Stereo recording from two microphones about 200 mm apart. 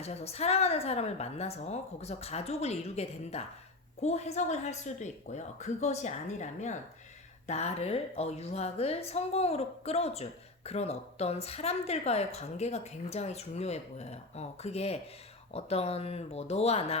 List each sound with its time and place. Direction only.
0.0 s a woman's voice: 30° left (ahead or behind)